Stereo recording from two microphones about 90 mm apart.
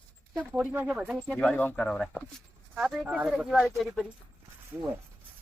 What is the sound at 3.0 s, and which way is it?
Speech, 10° right (ahead or behind).